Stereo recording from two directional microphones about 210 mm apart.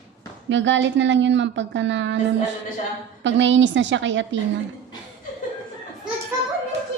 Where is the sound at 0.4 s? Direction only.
60° right (ahead or behind).